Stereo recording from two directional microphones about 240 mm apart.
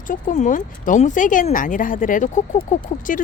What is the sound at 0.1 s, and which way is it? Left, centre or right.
Speech, left.